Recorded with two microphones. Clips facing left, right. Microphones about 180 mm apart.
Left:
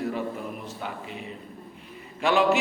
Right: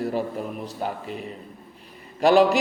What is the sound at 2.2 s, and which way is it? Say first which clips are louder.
Speech: right 5 dB; 35° right (ahead or behind).